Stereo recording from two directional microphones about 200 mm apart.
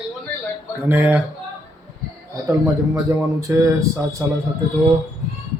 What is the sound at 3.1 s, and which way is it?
Speech, 15° right (ahead or behind).